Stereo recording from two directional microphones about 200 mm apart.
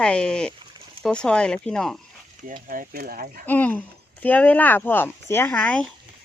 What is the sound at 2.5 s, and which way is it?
Speech, 45° right (ahead or behind).